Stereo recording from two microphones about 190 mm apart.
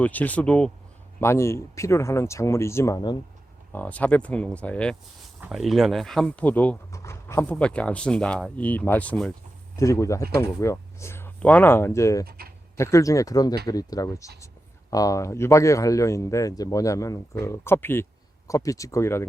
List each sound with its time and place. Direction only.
0.0 s speech: 10° left (ahead or behind)
3.7 s speech: 10° left (ahead or behind)
9.7 s speech: 15° left (ahead or behind)
12.2 s speech: 55° right (ahead or behind)
12.7 s speech: 15° left (ahead or behind)